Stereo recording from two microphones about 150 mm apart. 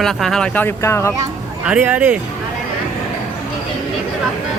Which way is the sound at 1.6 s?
10° right (ahead or behind).